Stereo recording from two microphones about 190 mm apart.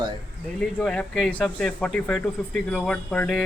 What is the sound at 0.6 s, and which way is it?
Speech, 5° left (ahead or behind).